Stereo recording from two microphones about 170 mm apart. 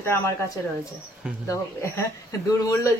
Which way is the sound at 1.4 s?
15° left (ahead or behind).